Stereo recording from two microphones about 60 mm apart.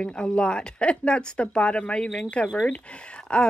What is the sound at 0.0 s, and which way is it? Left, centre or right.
Speech, centre.